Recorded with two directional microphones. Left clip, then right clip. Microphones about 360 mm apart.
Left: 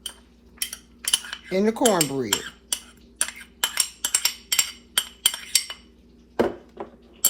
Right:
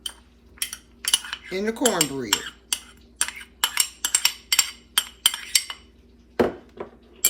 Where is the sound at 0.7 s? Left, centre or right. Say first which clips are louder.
Right 1 dB; centre.